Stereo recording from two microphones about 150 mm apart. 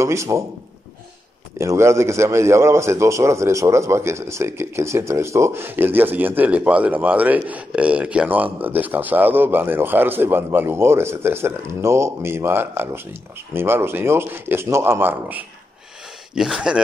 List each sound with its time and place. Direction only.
0.0 s a man's voice: 20° right (ahead or behind)
1.6 s a man's voice: 20° right (ahead or behind)